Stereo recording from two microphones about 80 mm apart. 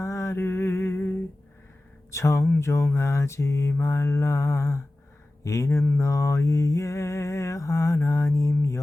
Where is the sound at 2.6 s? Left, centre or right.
Left.